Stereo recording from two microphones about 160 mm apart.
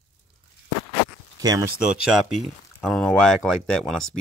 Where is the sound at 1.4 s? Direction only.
25° right (ahead or behind).